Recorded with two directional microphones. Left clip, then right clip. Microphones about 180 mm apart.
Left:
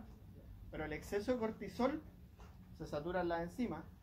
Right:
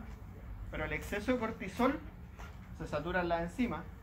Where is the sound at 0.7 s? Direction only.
45° left (ahead or behind).